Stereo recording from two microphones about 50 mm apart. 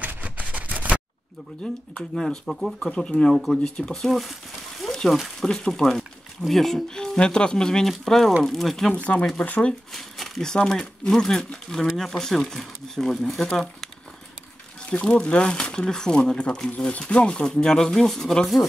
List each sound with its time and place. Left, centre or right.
0.0 s a sound: right
1.6 s speech: centre
3.0 s speech: centre
3.9 s speech: centre
5.4 s speech: centre
8.9 s speech: left
9.9 s speech: centre
14.9 s speech: left; by 18.7 s centre